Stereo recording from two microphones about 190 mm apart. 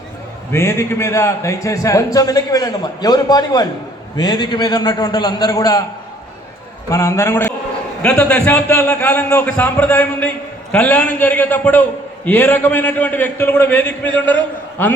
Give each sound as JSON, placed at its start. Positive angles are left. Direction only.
{"t": 0.5, "sound": "a man's voice", "side_deg": 15}
{"t": 6.9, "sound": "a man's voice", "side_deg": 15}